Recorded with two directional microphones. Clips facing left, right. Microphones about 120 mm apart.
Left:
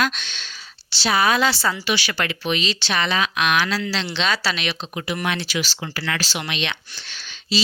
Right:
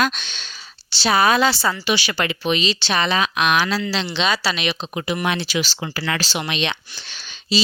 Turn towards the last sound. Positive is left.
turn(degrees=-15)  # may be behind; listen again after turning